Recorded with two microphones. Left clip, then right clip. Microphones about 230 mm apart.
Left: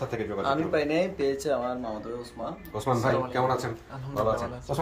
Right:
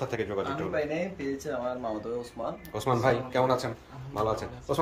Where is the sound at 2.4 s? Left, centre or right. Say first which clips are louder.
Even; right.